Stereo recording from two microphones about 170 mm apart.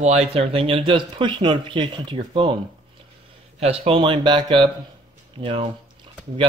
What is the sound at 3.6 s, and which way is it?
Speech, 35° right (ahead or behind).